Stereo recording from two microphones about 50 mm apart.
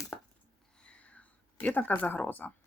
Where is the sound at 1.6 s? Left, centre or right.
Left.